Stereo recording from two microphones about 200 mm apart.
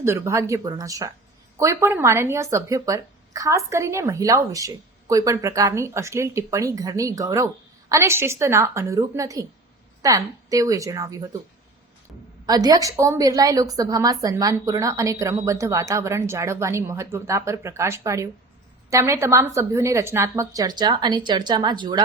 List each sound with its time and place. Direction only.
0.0 s speech: 15° right (ahead or behind)
12.5 s speech: 20° right (ahead or behind)